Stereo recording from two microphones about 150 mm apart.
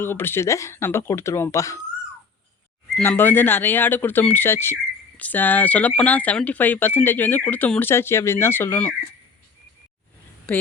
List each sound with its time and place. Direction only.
0.0 s speech: 15° left (ahead or behind)
3.0 s speech: 15° left (ahead or behind)